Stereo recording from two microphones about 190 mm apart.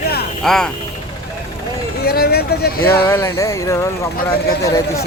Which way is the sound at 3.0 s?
15° left (ahead or behind).